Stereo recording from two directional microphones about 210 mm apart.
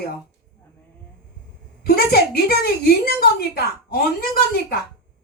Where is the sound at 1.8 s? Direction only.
45° left (ahead or behind).